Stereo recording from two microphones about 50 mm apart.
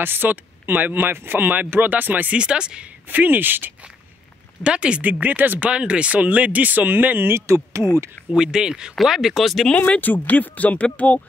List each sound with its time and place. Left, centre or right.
0.0 s speech: right
2.3 s speech: centre
3.1 s speech: right
4.6 s speech: right
5.0 s speech: right
5.7 s speech: right
7.4 s speech: right
8.4 s speech: centre
9.8 s speech: left